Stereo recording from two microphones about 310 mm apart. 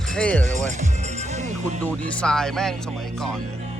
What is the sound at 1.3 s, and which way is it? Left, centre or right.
Music, right.